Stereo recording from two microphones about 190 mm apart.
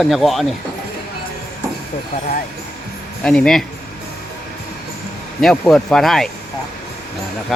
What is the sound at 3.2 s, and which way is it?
Speech, 5° left (ahead or behind).